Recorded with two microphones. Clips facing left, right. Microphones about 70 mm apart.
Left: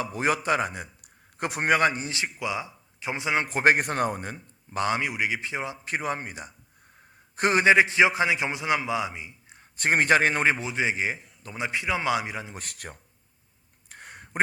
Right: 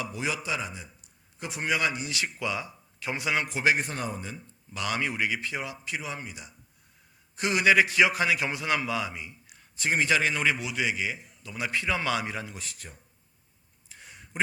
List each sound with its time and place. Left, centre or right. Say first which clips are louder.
0.0 s a man's voice: left 6 dB; left
2.2 s speech: left 2 dB; centre
3.4 s a man's voice: left 7 dB; left
4.8 s a man's voice: left 3 dB; left
5.8 s a man's voice: left 6 dB; left
7.6 s a man's voice: left 2 dB; left
9.7 s a man's voice: left 4 dB; left
11.5 s a man's voice: left 1 dB; left
12.5 s speech: left 3 dB; left
13.9 s a sound: left 5 dB; left